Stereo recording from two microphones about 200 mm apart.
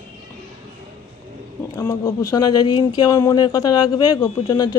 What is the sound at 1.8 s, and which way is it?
Speech, 15° left (ahead or behind).